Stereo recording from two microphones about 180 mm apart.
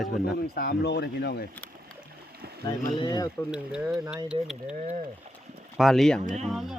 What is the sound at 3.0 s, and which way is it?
Speech, 20° left (ahead or behind).